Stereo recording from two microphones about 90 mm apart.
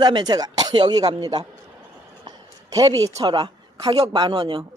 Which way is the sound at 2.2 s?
40° right (ahead or behind).